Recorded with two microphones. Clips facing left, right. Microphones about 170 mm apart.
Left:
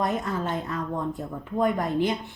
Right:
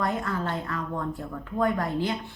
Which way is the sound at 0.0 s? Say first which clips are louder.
Left 1 dB; 20° left (ahead or behind).